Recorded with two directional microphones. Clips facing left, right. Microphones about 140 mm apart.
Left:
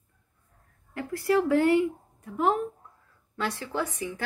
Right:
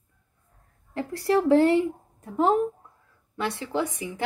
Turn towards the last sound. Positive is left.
turn(degrees=-15)  # may be behind; listen again after turning